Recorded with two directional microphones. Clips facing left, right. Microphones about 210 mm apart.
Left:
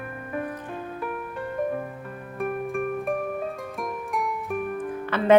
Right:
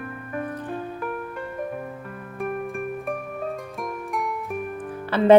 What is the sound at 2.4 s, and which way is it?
Music, centre (ahead or behind).